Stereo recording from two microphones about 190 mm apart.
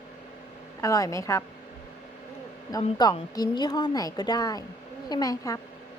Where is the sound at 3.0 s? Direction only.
20° left (ahead or behind).